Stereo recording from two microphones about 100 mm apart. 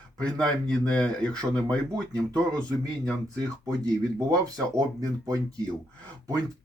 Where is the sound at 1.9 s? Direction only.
35° right (ahead or behind).